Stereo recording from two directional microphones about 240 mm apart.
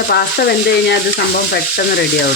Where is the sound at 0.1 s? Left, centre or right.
Left.